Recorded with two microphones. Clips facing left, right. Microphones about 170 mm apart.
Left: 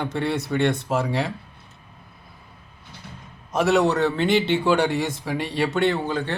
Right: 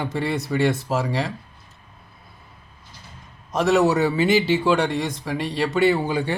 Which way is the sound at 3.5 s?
Centre (ahead or behind).